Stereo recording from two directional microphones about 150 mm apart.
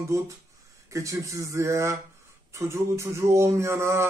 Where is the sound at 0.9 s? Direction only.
20° right (ahead or behind).